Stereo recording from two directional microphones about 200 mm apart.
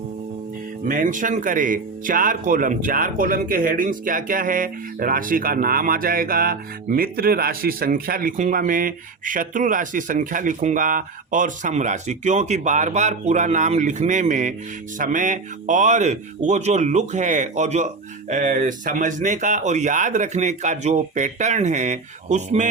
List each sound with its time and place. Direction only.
0.9 s speech: 40° right (ahead or behind)